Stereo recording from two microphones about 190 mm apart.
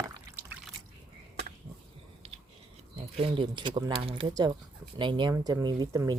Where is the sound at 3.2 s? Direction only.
25° right (ahead or behind).